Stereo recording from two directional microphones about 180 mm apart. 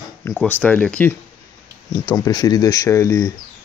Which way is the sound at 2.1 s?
20° left (ahead or behind).